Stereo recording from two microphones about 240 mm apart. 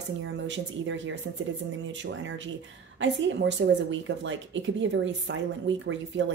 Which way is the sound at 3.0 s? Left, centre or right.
Right.